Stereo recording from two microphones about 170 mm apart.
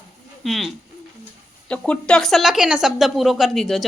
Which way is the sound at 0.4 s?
Centre (ahead or behind).